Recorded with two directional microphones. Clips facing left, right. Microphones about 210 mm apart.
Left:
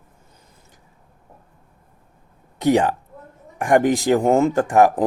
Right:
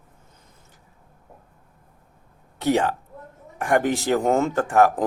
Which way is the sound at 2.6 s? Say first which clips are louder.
Left 4 dB; 15° left (ahead or behind).